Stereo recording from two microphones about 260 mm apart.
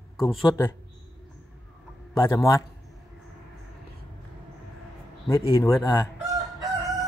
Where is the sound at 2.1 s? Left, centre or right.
Centre.